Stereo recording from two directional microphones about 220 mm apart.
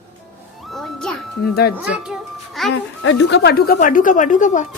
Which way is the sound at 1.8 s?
5° right (ahead or behind).